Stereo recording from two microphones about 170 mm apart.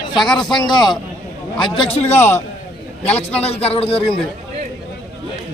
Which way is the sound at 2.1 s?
15° left (ahead or behind).